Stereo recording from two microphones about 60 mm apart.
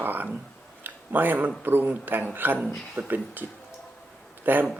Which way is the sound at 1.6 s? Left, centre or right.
Right.